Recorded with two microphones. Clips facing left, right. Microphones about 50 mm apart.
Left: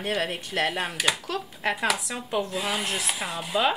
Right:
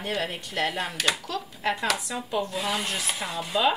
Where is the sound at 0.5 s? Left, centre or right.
Centre.